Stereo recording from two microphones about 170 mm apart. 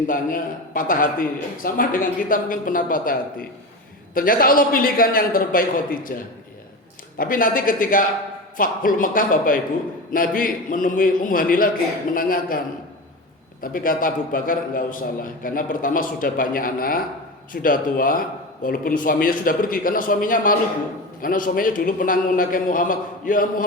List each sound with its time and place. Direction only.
0.1 s a man's voice: 55° left (ahead or behind)
7.2 s a man's voice: 55° left (ahead or behind)